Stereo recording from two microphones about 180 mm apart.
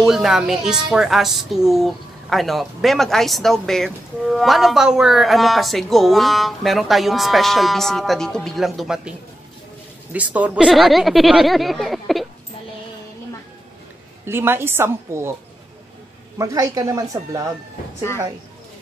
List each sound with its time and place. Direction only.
0.0 s speech: centre (ahead or behind)
10.1 s speech: 10° right (ahead or behind)
14.2 s a woman's voice: 10° right (ahead or behind)
16.3 s speech: 20° right (ahead or behind)